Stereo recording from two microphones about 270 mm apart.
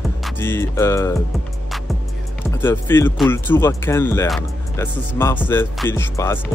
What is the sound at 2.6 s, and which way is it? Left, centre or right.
Speech, centre.